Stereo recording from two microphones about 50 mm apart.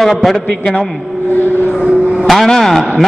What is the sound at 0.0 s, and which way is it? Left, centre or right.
Speech, centre.